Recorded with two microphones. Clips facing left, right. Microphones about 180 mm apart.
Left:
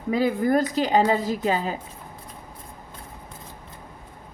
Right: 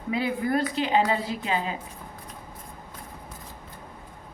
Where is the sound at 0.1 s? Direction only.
40° left (ahead or behind).